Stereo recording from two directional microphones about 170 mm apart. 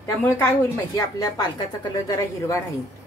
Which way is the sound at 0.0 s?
15° left (ahead or behind).